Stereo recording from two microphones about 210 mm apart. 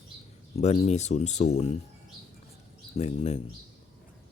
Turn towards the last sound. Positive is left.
turn(degrees=30)  # may be behind; listen again after turning